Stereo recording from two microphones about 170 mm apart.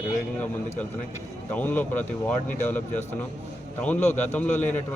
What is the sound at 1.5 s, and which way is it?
Speech, 10° left (ahead or behind).